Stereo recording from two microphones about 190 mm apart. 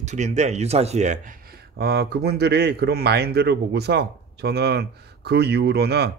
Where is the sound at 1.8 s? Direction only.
60° right (ahead or behind).